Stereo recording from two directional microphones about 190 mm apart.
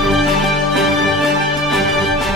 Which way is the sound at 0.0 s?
Centre (ahead or behind).